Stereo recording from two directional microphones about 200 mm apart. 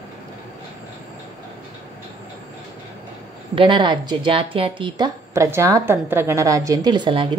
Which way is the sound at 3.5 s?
25° right (ahead or behind).